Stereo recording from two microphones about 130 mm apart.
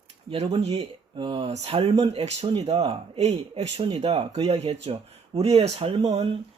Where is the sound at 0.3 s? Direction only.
45° right (ahead or behind).